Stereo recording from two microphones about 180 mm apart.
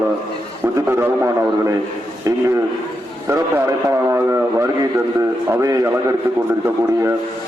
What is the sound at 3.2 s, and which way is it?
A man's voice, 15° right (ahead or behind).